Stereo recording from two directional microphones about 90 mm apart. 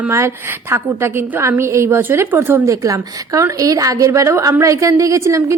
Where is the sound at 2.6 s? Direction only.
40° right (ahead or behind).